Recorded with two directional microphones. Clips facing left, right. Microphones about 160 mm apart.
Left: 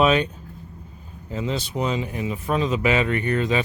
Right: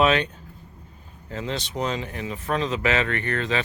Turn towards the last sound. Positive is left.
turn(degrees=10)  # may be behind; listen again after turning